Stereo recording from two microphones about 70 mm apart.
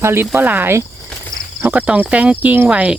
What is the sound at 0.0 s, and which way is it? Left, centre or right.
Speech, right.